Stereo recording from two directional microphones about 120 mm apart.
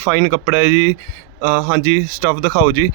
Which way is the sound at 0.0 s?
15° right (ahead or behind).